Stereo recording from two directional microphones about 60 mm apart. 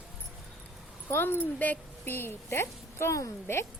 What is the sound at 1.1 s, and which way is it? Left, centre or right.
A woman's voice, left.